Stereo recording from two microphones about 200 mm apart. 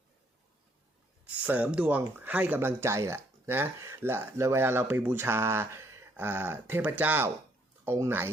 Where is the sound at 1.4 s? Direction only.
10° right (ahead or behind).